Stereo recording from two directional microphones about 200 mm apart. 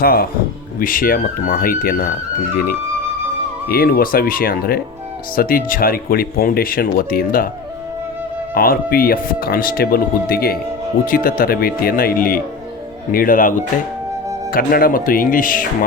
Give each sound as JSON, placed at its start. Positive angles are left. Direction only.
{"t": 0.0, "sound": "speech", "side_deg": 50}
{"t": 3.7, "sound": "speech", "side_deg": 45}
{"t": 8.5, "sound": "speech", "side_deg": 45}
{"t": 14.5, "sound": "speech", "side_deg": 45}